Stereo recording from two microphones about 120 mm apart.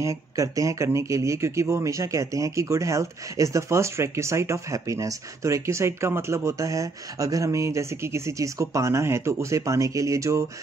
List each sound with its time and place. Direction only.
0.0 s speech: 25° right (ahead or behind)